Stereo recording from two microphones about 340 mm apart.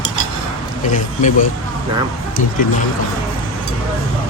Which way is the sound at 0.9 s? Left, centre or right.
Left.